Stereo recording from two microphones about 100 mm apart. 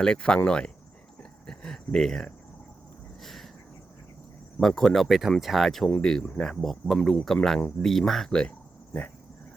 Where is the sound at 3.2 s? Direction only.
Centre (ahead or behind).